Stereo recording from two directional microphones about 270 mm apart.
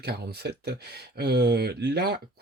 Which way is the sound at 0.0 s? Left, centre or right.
Right.